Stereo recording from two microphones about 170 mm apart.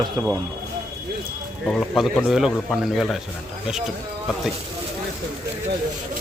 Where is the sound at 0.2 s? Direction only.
25° right (ahead or behind).